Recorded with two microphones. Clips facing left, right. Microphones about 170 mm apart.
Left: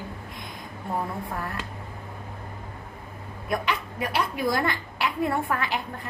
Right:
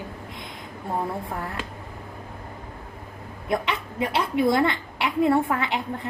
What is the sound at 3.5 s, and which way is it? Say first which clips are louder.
A woman's voice: right 2 dB; 25° right (ahead or behind).